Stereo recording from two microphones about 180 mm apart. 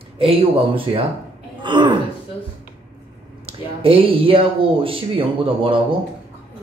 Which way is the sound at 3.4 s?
30° right (ahead or behind).